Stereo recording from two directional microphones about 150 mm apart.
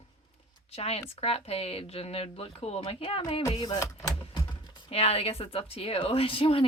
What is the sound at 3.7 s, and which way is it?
Speech, 20° left (ahead or behind).